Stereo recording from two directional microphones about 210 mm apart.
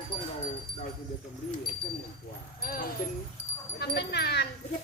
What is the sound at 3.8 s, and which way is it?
Speech, 50° left (ahead or behind).